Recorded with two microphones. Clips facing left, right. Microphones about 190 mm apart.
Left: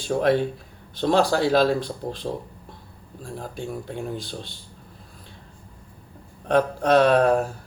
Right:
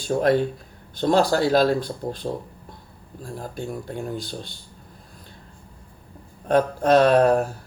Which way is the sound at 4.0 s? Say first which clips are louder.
Right 1 dB; centre (ahead or behind).